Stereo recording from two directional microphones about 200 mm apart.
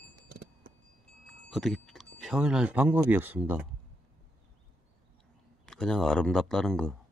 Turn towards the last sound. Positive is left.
turn(degrees=5)  # may be behind; listen again after turning